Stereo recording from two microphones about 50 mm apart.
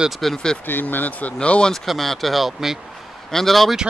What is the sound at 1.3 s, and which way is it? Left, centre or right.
Speech, left.